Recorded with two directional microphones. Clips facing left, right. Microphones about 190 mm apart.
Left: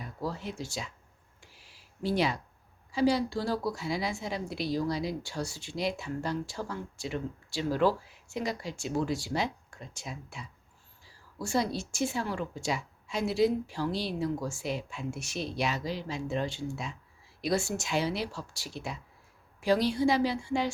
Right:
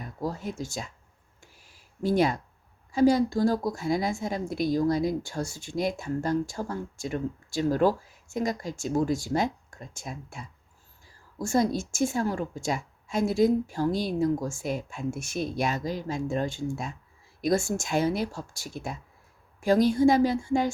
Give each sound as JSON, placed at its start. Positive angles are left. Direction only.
{"t": 0.0, "sound": "speech", "side_deg": -45}
{"t": 1.4, "sound": "a sound", "side_deg": -45}
{"t": 2.9, "sound": "a woman's voice", "side_deg": -45}